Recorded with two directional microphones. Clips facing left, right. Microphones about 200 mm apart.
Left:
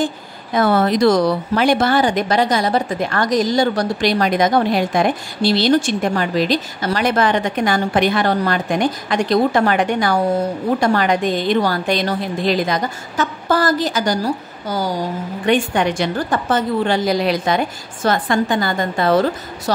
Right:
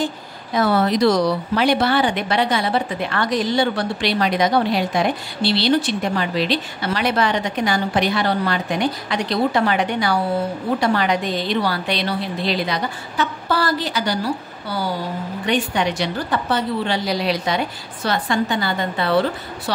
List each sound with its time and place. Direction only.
0.6 s speech: 50° left (ahead or behind)